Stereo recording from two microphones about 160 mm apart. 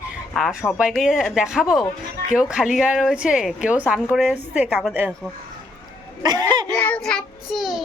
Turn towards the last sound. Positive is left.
turn(degrees=-5)  # may be behind; listen again after turning